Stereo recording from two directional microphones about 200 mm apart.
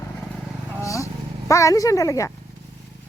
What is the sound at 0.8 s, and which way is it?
Vehicle, 15° left (ahead or behind).